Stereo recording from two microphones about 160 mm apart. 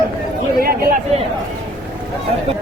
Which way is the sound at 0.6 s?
70° right (ahead or behind).